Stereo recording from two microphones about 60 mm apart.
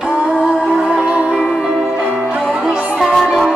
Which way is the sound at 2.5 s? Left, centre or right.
Centre.